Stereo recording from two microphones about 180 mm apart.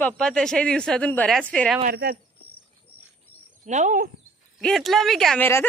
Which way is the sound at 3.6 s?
40° right (ahead or behind).